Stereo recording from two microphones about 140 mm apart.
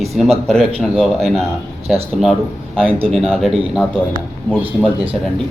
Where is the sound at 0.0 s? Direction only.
Centre (ahead or behind).